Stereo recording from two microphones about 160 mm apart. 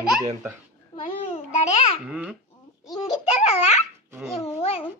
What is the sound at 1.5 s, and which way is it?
Babbling, 45° left (ahead or behind).